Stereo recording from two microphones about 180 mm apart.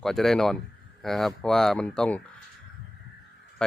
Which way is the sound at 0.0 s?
Centre (ahead or behind).